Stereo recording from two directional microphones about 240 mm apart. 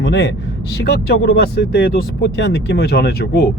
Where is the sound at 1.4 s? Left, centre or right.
Left.